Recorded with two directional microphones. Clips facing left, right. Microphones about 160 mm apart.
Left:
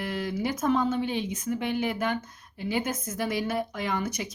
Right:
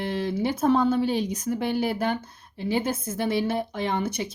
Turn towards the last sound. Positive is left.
turn(degrees=-30)  # may be behind; listen again after turning